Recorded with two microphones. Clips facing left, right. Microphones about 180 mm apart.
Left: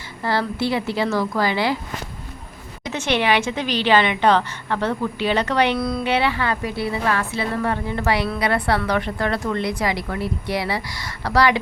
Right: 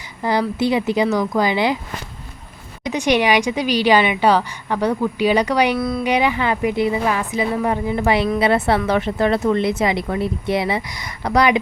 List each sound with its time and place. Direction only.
0.2 s a woman's voice: 15° right (ahead or behind)
2.9 s a woman's voice: 15° right (ahead or behind)